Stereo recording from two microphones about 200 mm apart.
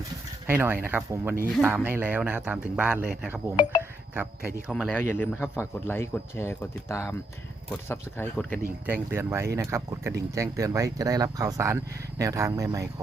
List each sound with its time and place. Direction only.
0.4 s speech: 10° right (ahead or behind)
3.5 s speech: 25° left (ahead or behind)
3.8 s music: 10° right (ahead or behind)
4.7 s speech: 5° left (ahead or behind)
8.9 s speech: 10° right (ahead or behind)